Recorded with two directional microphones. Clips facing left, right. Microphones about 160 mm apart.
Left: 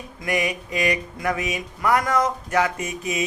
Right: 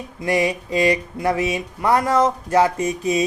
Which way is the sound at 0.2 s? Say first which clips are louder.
Right 5 dB; 30° right (ahead or behind).